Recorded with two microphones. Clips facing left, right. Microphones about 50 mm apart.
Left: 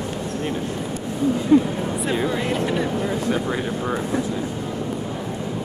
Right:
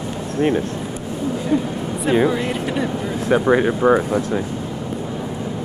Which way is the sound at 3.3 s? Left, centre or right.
Right.